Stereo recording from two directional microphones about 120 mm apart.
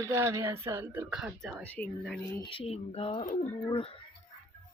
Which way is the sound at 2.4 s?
50° left (ahead or behind).